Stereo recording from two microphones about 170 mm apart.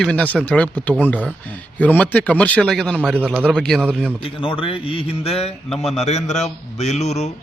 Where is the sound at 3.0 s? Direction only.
10° right (ahead or behind).